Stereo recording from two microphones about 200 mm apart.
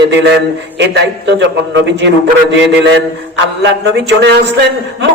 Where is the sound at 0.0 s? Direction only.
60° right (ahead or behind).